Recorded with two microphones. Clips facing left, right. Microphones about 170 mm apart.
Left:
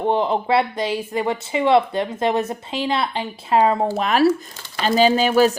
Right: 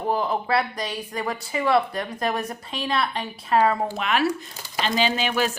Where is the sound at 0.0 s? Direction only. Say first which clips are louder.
Left 5 dB; 25° left (ahead or behind).